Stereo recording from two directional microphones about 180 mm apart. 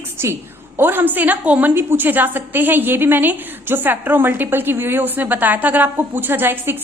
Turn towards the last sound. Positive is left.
turn(degrees=-10)  # may be behind; listen again after turning